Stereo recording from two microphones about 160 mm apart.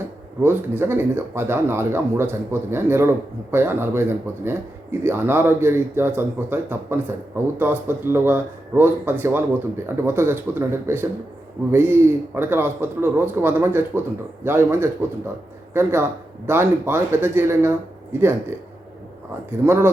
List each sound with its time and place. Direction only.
0.4 s speech: 15° right (ahead or behind)
19.5 s speech: 15° right (ahead or behind)